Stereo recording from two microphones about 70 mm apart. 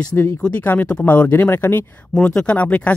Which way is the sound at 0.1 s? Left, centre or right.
Centre.